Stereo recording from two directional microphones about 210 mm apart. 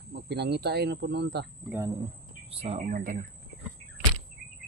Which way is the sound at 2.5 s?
30° right (ahead or behind).